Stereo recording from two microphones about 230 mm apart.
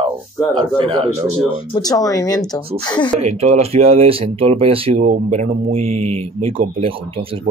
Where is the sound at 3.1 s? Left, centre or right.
Right.